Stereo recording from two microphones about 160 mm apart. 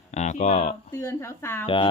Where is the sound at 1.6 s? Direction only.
35° left (ahead or behind).